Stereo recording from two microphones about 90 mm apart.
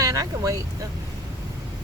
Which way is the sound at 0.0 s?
45° right (ahead or behind).